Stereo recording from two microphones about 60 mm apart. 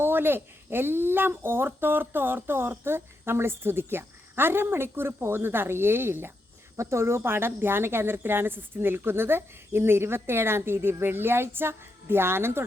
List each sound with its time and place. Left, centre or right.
0.0 s a woman's voice: right